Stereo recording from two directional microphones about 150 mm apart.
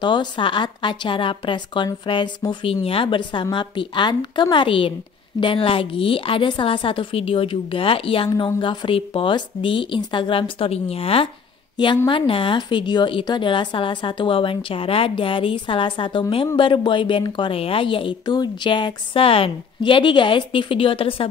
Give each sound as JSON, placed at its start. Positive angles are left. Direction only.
{"t": 0.0, "sound": "a woman's voice", "side_deg": 30}